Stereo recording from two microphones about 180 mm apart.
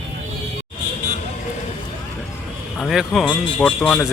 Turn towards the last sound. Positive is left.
turn(degrees=5)  # may be behind; listen again after turning